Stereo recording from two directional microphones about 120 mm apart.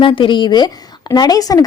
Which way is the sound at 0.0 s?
45° left (ahead or behind).